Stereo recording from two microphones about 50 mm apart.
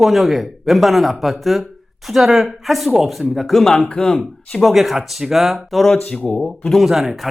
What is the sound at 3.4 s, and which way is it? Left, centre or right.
Speech, centre.